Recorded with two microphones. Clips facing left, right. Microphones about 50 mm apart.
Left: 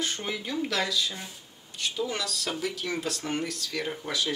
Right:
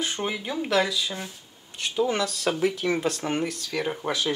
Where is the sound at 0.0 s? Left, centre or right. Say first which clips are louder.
Right 3 dB; centre.